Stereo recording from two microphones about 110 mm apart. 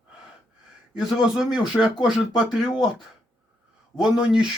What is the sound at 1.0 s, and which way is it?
Speech, centre (ahead or behind).